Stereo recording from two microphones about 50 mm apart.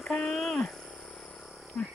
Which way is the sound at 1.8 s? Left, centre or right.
Centre.